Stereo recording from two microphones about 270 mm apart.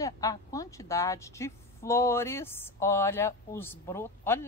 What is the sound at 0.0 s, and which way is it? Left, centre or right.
A woman's voice, centre.